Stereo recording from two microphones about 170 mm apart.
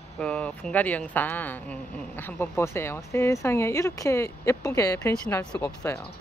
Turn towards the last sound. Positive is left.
turn(degrees=15)  # may be behind; listen again after turning